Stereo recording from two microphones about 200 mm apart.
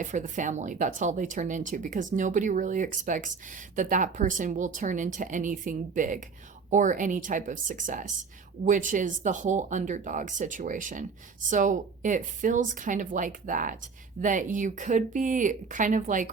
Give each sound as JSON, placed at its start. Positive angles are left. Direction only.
{"t": 0.0, "sound": "speech", "side_deg": -40}